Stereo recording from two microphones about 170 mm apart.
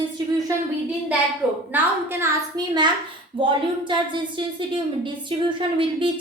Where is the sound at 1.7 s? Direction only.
10° right (ahead or behind).